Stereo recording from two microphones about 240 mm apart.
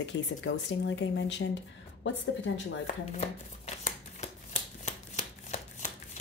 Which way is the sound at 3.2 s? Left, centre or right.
Left.